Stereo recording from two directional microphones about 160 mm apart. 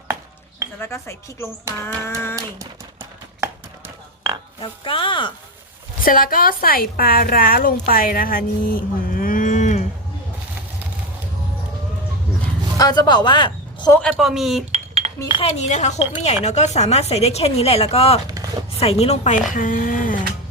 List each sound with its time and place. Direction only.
0.8 s speech: 15° left (ahead or behind)
4.6 s speech: 35° left (ahead or behind)
6.0 s a woman's voice: 60° left (ahead or behind)
12.7 s a man's voice: 25° left (ahead or behind)
13.9 s a man's voice: 5° left (ahead or behind)
14.7 s chink: 40° right (ahead or behind)
15.4 s speech: 45° left (ahead or behind)
18.3 s a sound: 25° right (ahead or behind)
18.8 s speech: 40° left (ahead or behind); by 20.1 s 60° left (ahead or behind)